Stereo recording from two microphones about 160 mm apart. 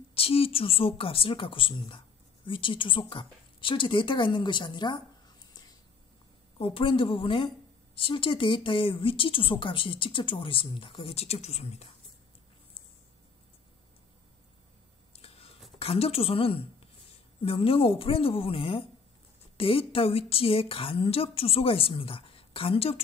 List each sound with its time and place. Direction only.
0.1 s speech: 35° left (ahead or behind)
6.6 s speech: 35° left (ahead or behind)
15.2 s a sound: 40° left (ahead or behind)
15.8 s speech: 35° left (ahead or behind)